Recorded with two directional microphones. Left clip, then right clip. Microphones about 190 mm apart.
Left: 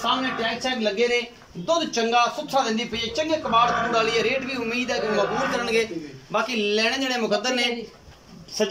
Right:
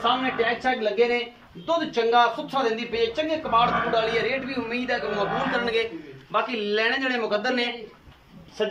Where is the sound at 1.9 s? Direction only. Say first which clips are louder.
Right 5 dB; 10° left (ahead or behind).